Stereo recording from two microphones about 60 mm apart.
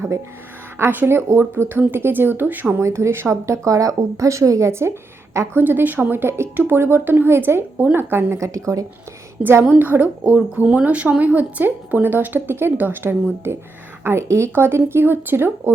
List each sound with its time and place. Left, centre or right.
0.9 s speech: right
2.8 s a woman's voice: right
4.7 s speech: right
5.5 s speech: right
8.4 s a woman's voice: right
9.4 s a woman's voice: right
14.5 s speech: right